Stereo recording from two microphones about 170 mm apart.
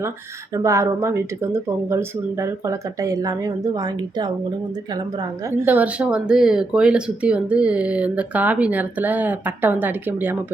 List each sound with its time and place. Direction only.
0.5 s speech: 20° right (ahead or behind)
5.5 s speech: 10° right (ahead or behind)